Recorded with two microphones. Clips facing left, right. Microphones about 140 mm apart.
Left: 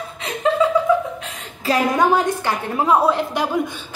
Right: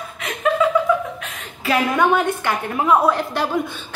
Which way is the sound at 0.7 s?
30° left (ahead or behind).